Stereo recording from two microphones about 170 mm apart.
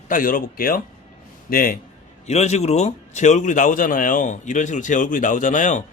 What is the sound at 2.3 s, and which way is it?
A man's voice, 40° left (ahead or behind).